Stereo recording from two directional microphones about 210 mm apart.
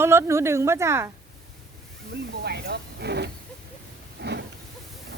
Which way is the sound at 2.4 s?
50° right (ahead or behind).